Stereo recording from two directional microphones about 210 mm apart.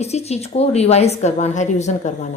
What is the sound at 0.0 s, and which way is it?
A woman's voice, 30° left (ahead or behind).